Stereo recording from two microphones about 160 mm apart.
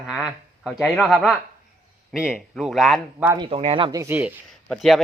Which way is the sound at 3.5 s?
35° right (ahead or behind).